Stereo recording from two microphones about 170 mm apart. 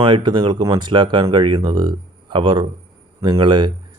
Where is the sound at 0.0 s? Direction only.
25° right (ahead or behind).